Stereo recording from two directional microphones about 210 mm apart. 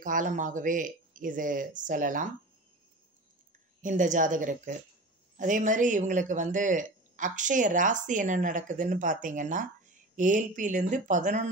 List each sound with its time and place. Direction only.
0.0 s speech: 40° right (ahead or behind)
3.8 s speech: 35° right (ahead or behind)